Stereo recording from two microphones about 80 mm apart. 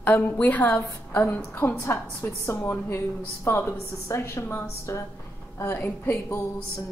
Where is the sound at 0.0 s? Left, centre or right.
Left.